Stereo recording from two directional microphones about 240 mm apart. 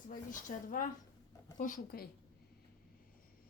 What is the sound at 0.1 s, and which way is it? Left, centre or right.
Speech, left.